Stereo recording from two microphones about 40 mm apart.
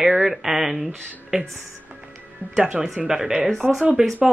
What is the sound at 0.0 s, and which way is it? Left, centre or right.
Speech, centre.